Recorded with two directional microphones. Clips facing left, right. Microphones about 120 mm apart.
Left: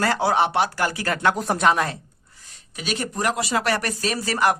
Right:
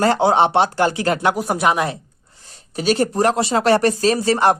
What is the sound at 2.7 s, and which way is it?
Speech, 35° right (ahead or behind).